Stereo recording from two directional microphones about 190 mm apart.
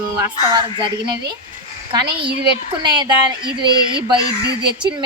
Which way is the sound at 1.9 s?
25° right (ahead or behind).